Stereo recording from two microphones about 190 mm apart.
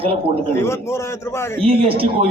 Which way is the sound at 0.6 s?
15° left (ahead or behind).